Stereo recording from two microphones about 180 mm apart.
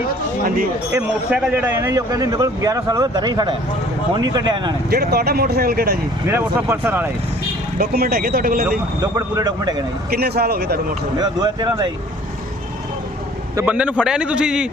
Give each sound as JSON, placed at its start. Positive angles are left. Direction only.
{"t": 0.4, "sound": "speech", "side_deg": -55}
{"t": 0.9, "sound": "a man's voice", "side_deg": -5}
{"t": 4.9, "sound": "speech", "side_deg": -60}
{"t": 6.2, "sound": "speech", "side_deg": -10}
{"t": 7.8, "sound": "speech", "side_deg": -55}
{"t": 9.0, "sound": "a man's voice", "side_deg": -20}
{"t": 10.1, "sound": "speech", "side_deg": -60}
{"t": 11.2, "sound": "a man's voice", "side_deg": -25}
{"t": 13.6, "sound": "a man's voice", "side_deg": -10}